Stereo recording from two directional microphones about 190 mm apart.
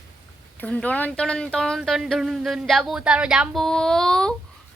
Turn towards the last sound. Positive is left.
turn(degrees=5)  # may be behind; listen again after turning